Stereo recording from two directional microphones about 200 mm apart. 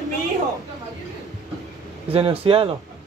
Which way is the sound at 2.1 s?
25° right (ahead or behind).